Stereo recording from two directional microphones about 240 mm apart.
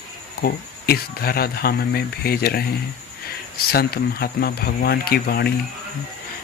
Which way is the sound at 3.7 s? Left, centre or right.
Left.